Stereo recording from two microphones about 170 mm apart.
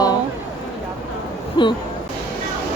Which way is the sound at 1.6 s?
30° left (ahead or behind).